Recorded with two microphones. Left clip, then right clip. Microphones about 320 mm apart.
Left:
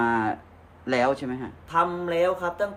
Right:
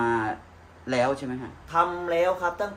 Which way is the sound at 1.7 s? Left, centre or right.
Centre.